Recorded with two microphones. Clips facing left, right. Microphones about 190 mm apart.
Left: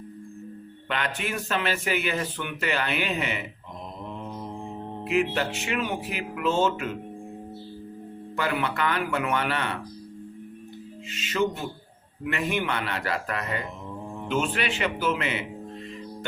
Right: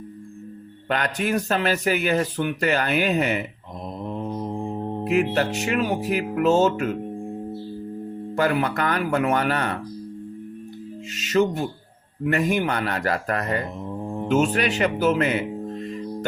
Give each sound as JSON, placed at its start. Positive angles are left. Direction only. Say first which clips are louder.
{"t": 0.9, "sound": "speech", "louder": "right 6 dB", "side_deg": -40}
{"t": 4.1, "sound": "music", "louder": "right 9 dB", "side_deg": -40}
{"t": 8.4, "sound": "speech", "louder": "right 5 dB", "side_deg": -40}
{"t": 11.1, "sound": "speech", "louder": "right 5 dB", "side_deg": -45}